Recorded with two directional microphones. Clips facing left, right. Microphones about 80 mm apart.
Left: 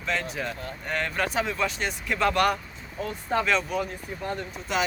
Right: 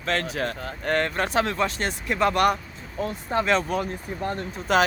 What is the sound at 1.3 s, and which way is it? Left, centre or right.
Speech, right.